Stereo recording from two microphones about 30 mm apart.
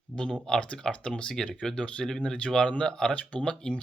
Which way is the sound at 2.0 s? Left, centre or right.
Left.